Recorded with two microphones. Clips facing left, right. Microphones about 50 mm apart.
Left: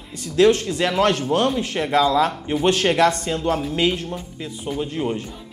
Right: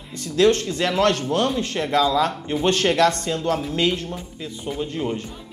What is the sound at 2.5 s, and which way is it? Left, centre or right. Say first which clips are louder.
Speech: even; centre.